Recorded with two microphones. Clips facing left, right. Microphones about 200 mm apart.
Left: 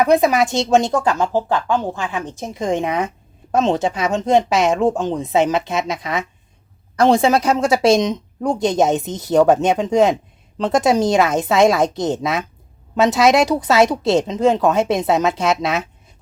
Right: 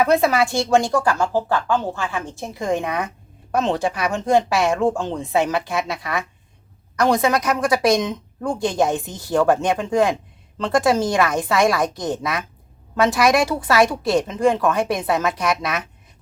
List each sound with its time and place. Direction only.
0.0 s a woman's voice: 15° left (ahead or behind)